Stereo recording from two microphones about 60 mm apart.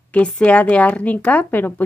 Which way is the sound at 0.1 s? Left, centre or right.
Left.